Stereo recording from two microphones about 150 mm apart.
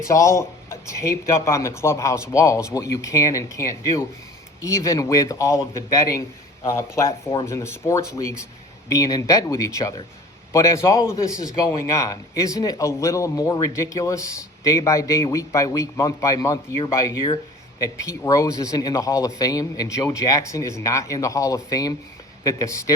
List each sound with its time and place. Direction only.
0.0 s a man's voice: 20° left (ahead or behind)